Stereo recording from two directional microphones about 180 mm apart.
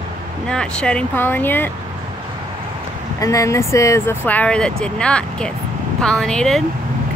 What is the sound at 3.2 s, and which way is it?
Speech, 20° left (ahead or behind).